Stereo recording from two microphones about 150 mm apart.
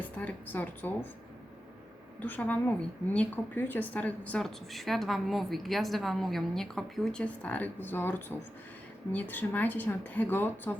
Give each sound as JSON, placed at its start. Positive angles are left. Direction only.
{"t": 0.0, "sound": "a woman's voice", "side_deg": 10}
{"t": 2.2, "sound": "a woman's voice", "side_deg": 10}